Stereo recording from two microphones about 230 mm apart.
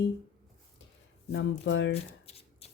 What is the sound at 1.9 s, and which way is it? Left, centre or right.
Shuffling cards, left.